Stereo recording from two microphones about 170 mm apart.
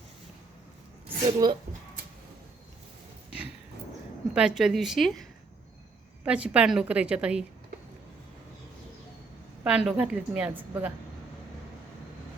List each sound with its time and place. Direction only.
1.2 s speech: 25° right (ahead or behind)
4.4 s a woman's voice: 5° right (ahead or behind)
9.6 s a woman's voice: 5° right (ahead or behind)